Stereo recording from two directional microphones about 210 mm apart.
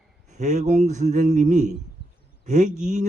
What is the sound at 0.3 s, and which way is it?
Speech, 35° right (ahead or behind).